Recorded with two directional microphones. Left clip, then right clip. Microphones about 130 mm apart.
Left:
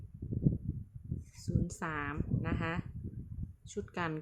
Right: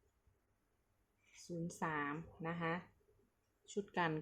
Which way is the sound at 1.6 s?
25° left (ahead or behind).